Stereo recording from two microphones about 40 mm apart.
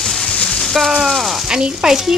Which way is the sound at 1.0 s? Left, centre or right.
Centre.